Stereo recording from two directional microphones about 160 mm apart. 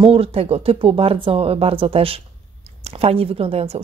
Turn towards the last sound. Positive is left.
turn(degrees=-40)  # may be behind; listen again after turning